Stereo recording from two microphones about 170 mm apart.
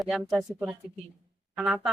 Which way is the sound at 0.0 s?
Centre (ahead or behind).